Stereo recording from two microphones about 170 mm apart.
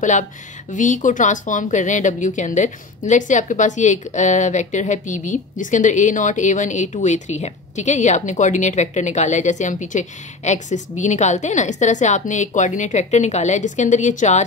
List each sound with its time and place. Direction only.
0.7 s speech: 50° left (ahead or behind)